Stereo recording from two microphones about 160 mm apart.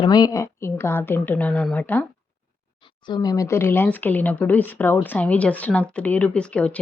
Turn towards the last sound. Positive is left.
turn(degrees=5)  # may be behind; listen again after turning